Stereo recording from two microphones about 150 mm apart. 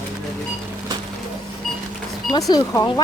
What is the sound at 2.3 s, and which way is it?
Speech, 25° left (ahead or behind).